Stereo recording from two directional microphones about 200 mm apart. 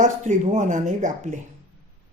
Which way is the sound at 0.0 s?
40° right (ahead or behind).